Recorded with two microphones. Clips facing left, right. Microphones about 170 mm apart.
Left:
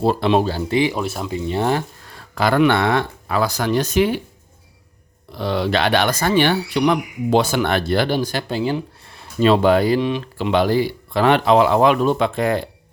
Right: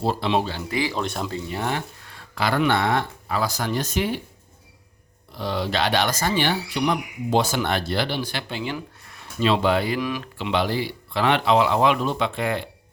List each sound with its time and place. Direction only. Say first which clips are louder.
0.0 s speech: left 6 dB; 55° left (ahead or behind)
0.7 s speech: left 8 dB; 20° left (ahead or behind)
0.9 s speech: left 3 dB; 5° left (ahead or behind)
1.5 s speech: left 10 dB; 30° left (ahead or behind)
2.3 s speech: left 6 dB; 45° left (ahead or behind)
2.6 s speech: left 5 dB; 70° left (ahead or behind); by 4.2 s 85° left
5.4 s speech: left 5 dB; 70° left (ahead or behind); by 9.2 s 30° left (ahead or behind)
9.4 s speech: left 6 dB; 45° left (ahead or behind)
10.0 s speech: left 6 dB; 25° left (ahead or behind)
10.3 s speech: left 7 dB; 45° left (ahead or behind)